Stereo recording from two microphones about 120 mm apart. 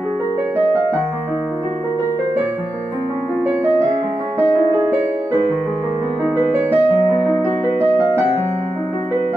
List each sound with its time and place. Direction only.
3.4 s music: 15° right (ahead or behind)